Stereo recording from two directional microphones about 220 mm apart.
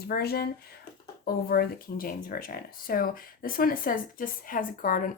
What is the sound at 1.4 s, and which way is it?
A woman's voice, 40° left (ahead or behind).